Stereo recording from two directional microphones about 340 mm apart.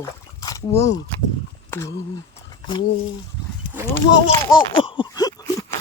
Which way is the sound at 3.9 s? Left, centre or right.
Centre.